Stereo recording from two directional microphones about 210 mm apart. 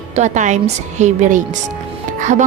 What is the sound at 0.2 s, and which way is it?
A woman's voice, 35° right (ahead or behind).